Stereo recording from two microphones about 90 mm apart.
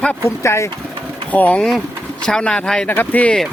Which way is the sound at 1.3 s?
15° left (ahead or behind).